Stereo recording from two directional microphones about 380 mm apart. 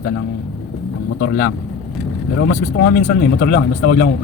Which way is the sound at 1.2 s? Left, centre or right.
Left.